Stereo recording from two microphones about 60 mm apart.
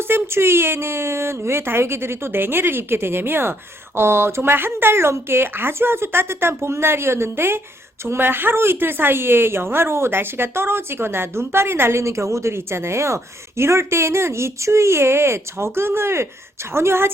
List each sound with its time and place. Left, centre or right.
0.1 s a woman's voice: right